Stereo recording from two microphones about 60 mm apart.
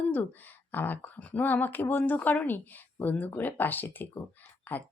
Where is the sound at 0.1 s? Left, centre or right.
Left.